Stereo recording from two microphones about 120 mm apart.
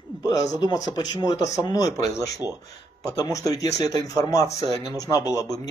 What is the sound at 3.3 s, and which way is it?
Speech, 30° left (ahead or behind).